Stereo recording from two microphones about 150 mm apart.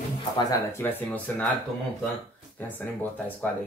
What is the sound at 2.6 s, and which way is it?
Speech, 10° left (ahead or behind).